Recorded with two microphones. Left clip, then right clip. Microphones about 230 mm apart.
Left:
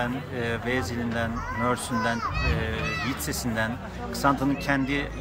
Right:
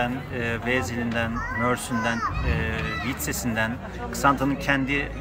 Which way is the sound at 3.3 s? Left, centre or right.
Centre.